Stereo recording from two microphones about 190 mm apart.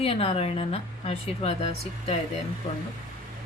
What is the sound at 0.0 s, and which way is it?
A woman's voice, 30° left (ahead or behind).